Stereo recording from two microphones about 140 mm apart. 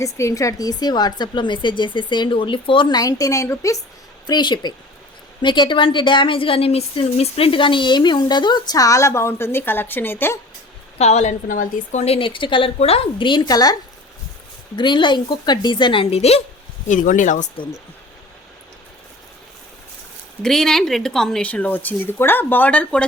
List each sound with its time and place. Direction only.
0.0 s speech: 20° left (ahead or behind)
4.3 s speech: 30° left (ahead or behind); by 10.3 s 15° left (ahead or behind)
10.9 s a woman's voice: 50° left (ahead or behind)
11.4 s speech: 70° left (ahead or behind); by 13.7 s 30° left (ahead or behind)
14.8 s speech: 35° left (ahead or behind)
16.9 s speech: 65° left (ahead or behind)
20.4 s speech: 5° left (ahead or behind)